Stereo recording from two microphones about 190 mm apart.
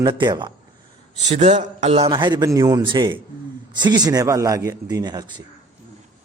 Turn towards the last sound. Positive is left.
turn(degrees=-20)  # may be behind; listen again after turning